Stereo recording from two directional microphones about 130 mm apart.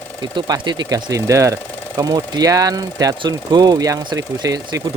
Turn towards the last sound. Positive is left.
turn(degrees=-30)  # may be behind; listen again after turning